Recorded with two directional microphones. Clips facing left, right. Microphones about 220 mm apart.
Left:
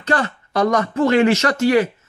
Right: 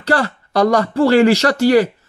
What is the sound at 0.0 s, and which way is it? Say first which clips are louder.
A man's voice: right 3 dB; 35° right (ahead or behind).